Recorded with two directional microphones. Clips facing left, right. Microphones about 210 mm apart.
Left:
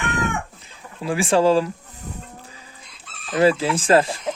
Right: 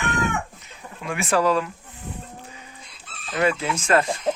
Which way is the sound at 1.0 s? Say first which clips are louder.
Left 4 dB; 30° left (ahead or behind).